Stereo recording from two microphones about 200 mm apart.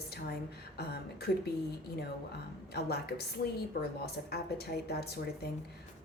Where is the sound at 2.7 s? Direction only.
50° left (ahead or behind).